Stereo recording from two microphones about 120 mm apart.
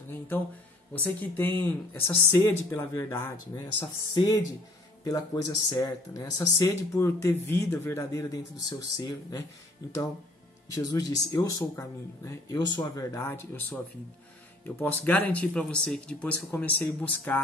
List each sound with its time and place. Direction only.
0.9 s speech: 15° left (ahead or behind); by 9.4 s 30° left (ahead or behind)
10.7 s speech: 30° left (ahead or behind)
14.8 s speech: 15° left (ahead or behind)